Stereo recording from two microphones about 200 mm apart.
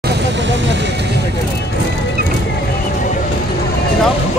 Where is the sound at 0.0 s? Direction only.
60° right (ahead or behind).